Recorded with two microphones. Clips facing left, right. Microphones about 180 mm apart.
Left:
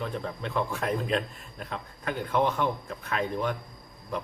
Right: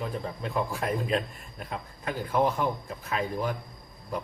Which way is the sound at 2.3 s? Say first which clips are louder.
Even; 5° right (ahead or behind).